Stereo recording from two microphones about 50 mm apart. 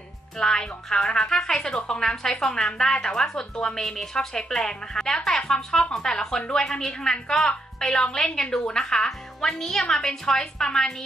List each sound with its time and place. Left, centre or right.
0.4 s a woman's voice: centre